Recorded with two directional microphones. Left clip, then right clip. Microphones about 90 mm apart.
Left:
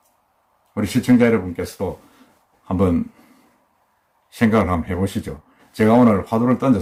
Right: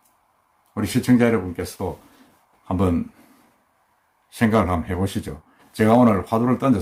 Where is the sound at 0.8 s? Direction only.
15° right (ahead or behind).